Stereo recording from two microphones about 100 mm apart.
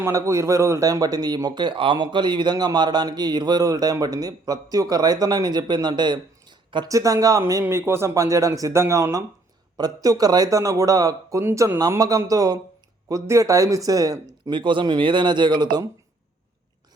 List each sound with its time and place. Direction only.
0.0 s speech: 30° right (ahead or behind); by 6.1 s 45° right (ahead or behind)
6.8 s a man's voice: 35° right (ahead or behind)
7.6 s a man's voice: 25° right (ahead or behind)
14.5 s speech: 55° right (ahead or behind)